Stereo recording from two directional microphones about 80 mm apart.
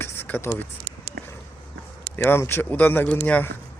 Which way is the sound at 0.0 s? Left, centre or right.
Left.